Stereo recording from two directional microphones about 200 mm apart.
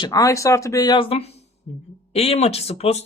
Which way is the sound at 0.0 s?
15° left (ahead or behind).